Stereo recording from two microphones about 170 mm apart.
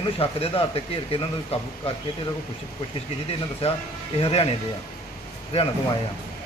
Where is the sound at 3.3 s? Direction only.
35° left (ahead or behind).